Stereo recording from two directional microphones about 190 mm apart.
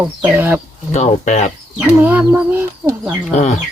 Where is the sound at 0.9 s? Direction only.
35° left (ahead or behind).